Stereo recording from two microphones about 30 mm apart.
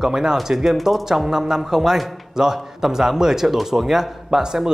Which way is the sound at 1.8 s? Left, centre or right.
Centre.